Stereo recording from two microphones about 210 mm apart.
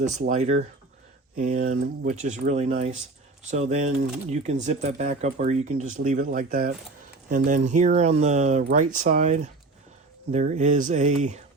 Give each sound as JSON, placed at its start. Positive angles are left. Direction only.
{"t": 0.0, "sound": "speech", "side_deg": -35}